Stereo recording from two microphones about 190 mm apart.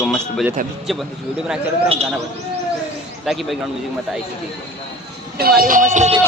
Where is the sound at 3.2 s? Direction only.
Centre (ahead or behind).